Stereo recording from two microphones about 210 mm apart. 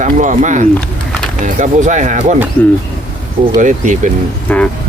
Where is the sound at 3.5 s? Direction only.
35° right (ahead or behind).